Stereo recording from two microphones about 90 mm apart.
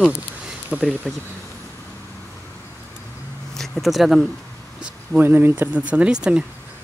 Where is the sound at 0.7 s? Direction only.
15° right (ahead or behind).